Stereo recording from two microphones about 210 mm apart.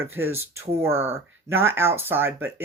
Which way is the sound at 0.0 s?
10° right (ahead or behind).